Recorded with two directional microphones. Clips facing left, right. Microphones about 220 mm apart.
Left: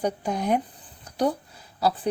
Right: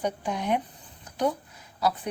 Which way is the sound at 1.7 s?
30° left (ahead or behind).